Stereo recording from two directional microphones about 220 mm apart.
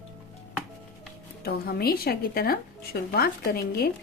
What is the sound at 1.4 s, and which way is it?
Speech, 45° left (ahead or behind).